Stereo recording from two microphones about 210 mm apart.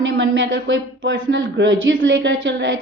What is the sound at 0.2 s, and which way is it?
A woman's voice, 60° right (ahead or behind).